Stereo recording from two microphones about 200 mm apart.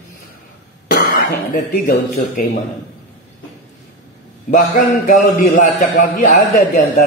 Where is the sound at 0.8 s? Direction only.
50° left (ahead or behind).